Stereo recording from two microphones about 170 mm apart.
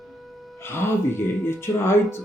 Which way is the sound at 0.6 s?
15° left (ahead or behind).